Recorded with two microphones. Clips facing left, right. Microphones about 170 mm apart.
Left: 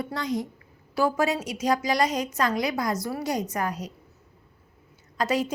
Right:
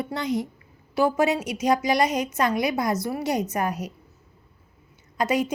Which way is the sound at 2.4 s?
25° right (ahead or behind).